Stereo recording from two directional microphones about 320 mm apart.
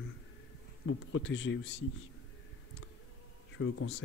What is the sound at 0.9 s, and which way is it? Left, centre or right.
Speech, left.